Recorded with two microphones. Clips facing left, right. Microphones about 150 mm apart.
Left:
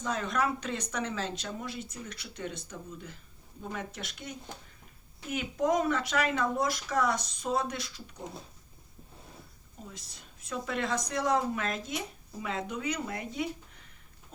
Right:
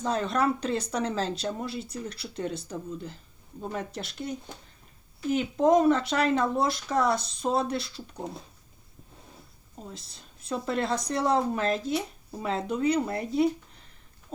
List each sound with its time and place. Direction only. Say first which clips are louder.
0.0 s speech: right 5 dB; 30° right (ahead or behind)
9.9 s speech: right 4 dB; 30° right (ahead or behind)